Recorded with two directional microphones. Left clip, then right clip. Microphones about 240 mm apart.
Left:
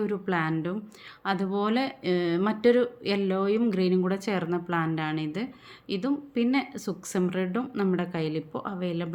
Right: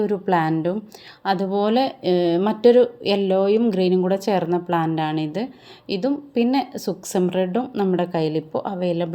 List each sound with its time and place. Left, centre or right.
0.0 s speech: centre